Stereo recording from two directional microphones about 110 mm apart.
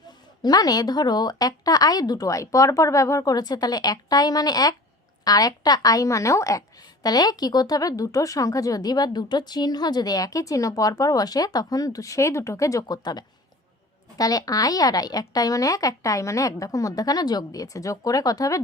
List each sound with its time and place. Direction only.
0.4 s a woman's voice: 35° left (ahead or behind)